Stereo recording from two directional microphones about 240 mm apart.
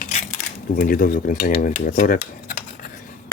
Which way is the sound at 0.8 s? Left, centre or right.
Left.